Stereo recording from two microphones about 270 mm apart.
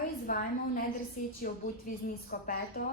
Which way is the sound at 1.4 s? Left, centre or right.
Left.